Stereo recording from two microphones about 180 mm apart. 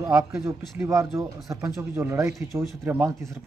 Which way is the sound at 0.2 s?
15° right (ahead or behind).